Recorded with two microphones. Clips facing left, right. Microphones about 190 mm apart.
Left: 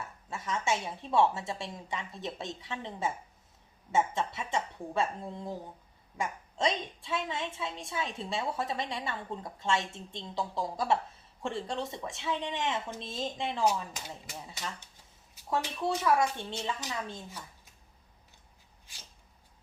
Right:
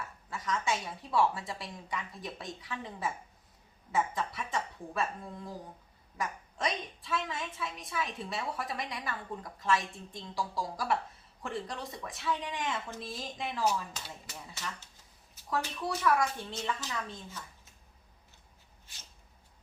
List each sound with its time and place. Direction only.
0.0 s a woman's voice: 25° left (ahead or behind)
15.8 s a woman's voice: 25° left (ahead or behind)